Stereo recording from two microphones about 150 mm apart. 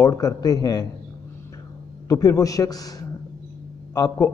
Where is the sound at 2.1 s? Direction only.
20° left (ahead or behind).